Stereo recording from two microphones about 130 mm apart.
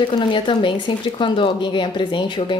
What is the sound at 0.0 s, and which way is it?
A woman's voice, 35° left (ahead or behind).